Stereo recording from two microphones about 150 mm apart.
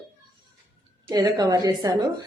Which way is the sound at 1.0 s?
25° right (ahead or behind).